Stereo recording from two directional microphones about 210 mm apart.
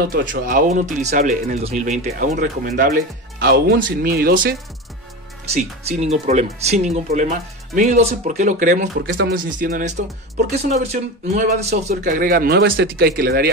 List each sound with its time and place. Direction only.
0.1 s speech: 40° right (ahead or behind)
2.0 s speech: 45° right (ahead or behind)
5.5 s speech: 30° right (ahead or behind)
11.4 s speech: 45° right (ahead or behind)